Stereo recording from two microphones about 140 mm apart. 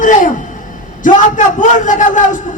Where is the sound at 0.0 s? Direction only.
70° left (ahead or behind).